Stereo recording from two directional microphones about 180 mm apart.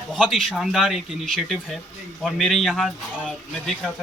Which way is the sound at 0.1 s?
Centre (ahead or behind).